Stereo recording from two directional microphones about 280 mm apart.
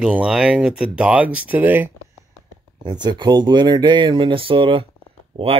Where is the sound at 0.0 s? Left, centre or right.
Centre.